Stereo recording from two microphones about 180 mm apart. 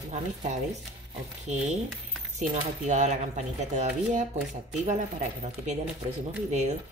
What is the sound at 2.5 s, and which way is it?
Speech, 40° right (ahead or behind).